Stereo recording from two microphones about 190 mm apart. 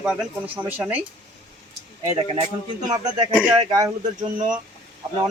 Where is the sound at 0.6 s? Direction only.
10° right (ahead or behind).